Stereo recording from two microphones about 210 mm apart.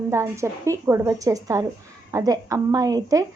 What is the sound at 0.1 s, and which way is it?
A woman's voice, 15° right (ahead or behind).